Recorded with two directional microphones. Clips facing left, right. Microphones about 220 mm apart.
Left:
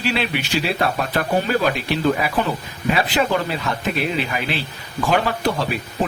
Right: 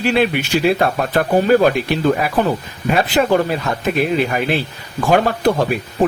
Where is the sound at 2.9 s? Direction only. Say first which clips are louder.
Right 5 dB; 45° right (ahead or behind).